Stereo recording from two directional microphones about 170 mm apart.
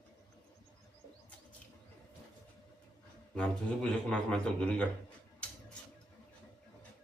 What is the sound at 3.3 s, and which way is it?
A man's voice, 5° left (ahead or behind).